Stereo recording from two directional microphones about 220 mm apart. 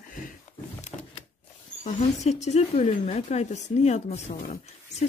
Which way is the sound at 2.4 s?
30° left (ahead or behind).